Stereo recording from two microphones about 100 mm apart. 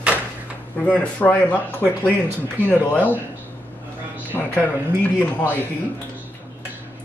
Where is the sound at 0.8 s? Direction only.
15° left (ahead or behind).